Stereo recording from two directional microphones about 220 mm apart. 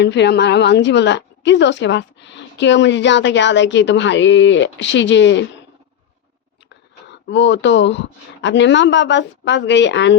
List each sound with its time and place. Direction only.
0.0 s a woman's voice: 50° left (ahead or behind)
7.1 s a woman's voice: 55° left (ahead or behind)